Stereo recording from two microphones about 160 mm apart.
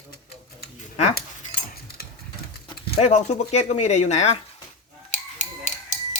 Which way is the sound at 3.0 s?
45° left (ahead or behind).